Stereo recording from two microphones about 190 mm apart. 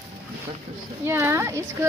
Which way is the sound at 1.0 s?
15° right (ahead or behind).